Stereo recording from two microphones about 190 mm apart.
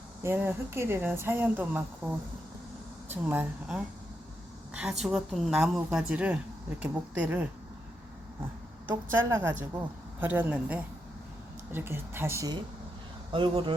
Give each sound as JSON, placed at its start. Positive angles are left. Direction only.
{"t": 0.2, "sound": "a woman's voice", "side_deg": -10}
{"t": 8.9, "sound": "speech", "side_deg": -10}
{"t": 13.3, "sound": "speech", "side_deg": -25}